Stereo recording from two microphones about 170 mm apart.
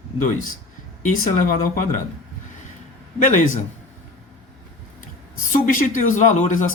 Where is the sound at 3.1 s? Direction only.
45° left (ahead or behind).